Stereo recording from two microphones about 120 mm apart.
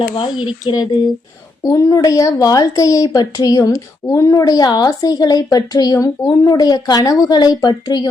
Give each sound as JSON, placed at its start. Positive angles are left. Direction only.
{"t": 0.2, "sound": "a woman's voice", "side_deg": 35}